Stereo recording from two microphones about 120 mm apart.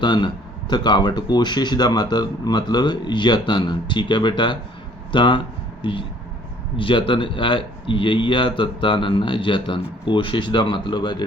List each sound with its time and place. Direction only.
0.0 s speech: 40° left (ahead or behind)